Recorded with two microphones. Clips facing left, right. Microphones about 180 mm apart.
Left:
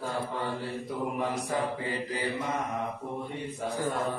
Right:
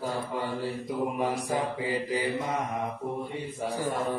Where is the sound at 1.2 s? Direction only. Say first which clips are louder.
Left 1 dB; 15° right (ahead or behind).